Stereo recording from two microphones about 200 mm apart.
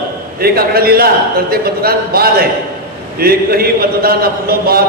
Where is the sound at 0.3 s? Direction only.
50° right (ahead or behind).